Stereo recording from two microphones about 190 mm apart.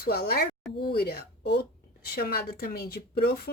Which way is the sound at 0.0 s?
55° left (ahead or behind).